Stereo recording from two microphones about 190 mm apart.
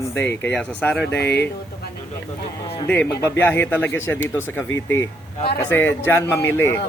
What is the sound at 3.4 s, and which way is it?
Speech, 10° left (ahead or behind).